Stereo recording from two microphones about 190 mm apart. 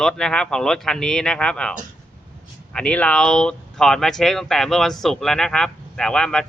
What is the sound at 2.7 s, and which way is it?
Speech, 5° left (ahead or behind).